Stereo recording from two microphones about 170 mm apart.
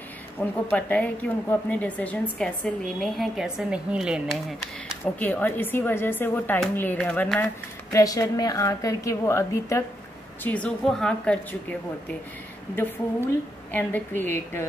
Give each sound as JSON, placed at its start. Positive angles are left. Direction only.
{"t": 0.4, "sound": "speech", "side_deg": 10}
{"t": 5.0, "sound": "speech", "side_deg": 10}
{"t": 8.0, "sound": "a woman's voice", "side_deg": 20}
{"t": 12.7, "sound": "speech", "side_deg": 10}